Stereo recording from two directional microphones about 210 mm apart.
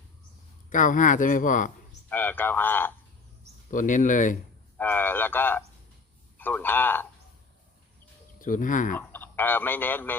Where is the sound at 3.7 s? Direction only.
40° left (ahead or behind).